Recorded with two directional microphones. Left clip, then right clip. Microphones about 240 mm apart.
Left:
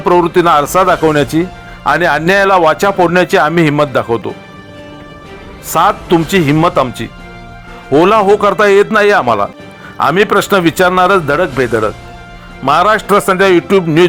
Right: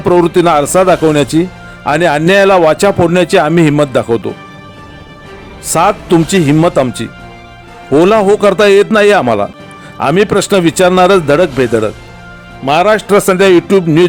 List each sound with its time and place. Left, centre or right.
0.0 s speech: right
5.6 s speech: right
8.4 s speech: right
12.6 s a man's voice: centre
13.1 s speech: right